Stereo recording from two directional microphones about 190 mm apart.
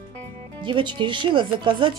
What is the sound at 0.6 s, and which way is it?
Speech, 25° right (ahead or behind).